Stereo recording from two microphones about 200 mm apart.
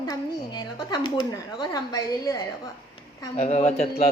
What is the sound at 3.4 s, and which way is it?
Speech, 35° left (ahead or behind).